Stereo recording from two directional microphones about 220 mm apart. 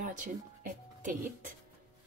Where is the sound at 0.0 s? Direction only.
35° right (ahead or behind).